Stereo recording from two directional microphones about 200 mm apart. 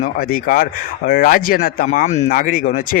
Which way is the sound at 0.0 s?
45° left (ahead or behind).